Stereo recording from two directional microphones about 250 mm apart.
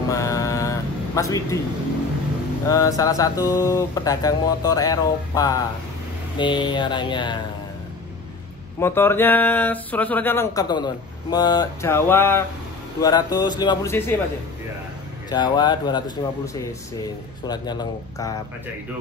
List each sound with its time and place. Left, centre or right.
0.1 s a sound: centre
2.7 s speech: centre
8.7 s speech: centre
15.2 s speech: centre
17.5 s speech: centre